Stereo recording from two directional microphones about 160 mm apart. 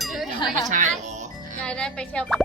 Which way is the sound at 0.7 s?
50° right (ahead or behind).